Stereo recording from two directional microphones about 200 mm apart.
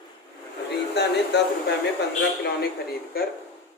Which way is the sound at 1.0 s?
55° left (ahead or behind).